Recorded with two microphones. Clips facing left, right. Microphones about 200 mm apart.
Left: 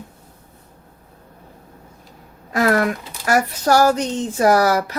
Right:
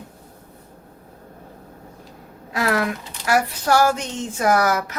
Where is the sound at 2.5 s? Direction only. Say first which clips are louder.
Left 5 dB; 45° left (ahead or behind).